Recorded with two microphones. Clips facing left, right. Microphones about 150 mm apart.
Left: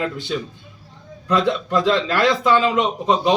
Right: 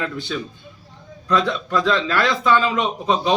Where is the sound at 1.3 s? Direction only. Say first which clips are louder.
Left 2 dB; 20° left (ahead or behind).